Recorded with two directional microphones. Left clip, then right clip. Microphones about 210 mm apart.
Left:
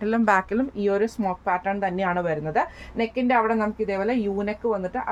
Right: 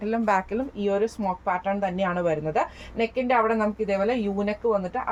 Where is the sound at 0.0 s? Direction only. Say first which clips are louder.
Left 3 dB; 25° left (ahead or behind).